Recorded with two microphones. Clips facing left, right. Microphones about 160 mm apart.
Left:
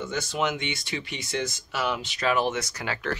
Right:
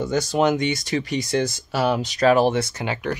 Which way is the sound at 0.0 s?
35° right (ahead or behind).